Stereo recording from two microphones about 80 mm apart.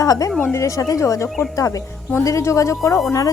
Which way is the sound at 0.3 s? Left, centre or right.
Left.